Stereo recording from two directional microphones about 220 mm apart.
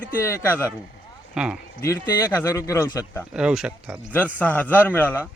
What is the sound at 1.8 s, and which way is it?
Speech, 15° left (ahead or behind).